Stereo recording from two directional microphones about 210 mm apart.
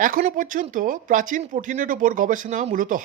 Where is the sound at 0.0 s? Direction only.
40° right (ahead or behind).